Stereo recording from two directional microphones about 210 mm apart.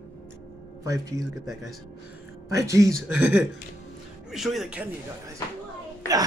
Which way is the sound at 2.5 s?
15° right (ahead or behind).